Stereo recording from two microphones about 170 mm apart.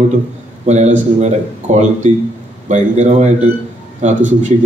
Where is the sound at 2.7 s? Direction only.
45° right (ahead or behind).